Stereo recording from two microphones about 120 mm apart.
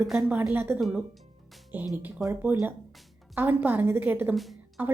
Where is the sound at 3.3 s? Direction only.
15° right (ahead or behind).